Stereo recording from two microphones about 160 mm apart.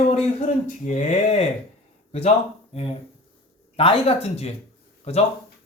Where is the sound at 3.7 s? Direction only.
35° left (ahead or behind).